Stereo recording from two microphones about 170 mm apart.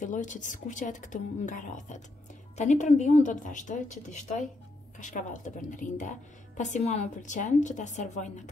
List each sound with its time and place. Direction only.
0.0 s a woman's voice: 45° left (ahead or behind)